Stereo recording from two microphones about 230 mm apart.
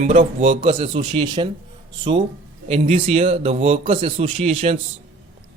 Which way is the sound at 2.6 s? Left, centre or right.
Right.